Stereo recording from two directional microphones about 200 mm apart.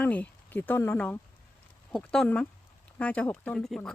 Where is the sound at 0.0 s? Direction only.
10° left (ahead or behind).